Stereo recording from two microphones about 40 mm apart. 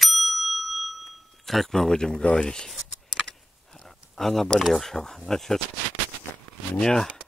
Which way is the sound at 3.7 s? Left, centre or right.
Centre.